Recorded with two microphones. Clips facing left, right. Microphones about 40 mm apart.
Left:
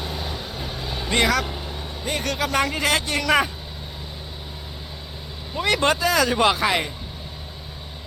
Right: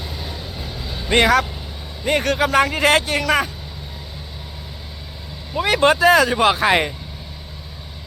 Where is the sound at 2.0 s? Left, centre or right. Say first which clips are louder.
Right 8 dB; right.